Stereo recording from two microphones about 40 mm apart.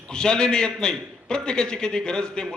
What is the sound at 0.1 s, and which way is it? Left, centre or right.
A man's voice, left.